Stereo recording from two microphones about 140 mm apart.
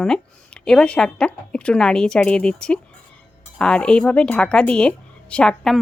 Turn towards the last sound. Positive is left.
turn(degrees=5)  # may be behind; listen again after turning